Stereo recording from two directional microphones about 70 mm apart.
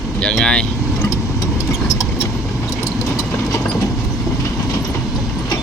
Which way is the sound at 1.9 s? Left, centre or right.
Left.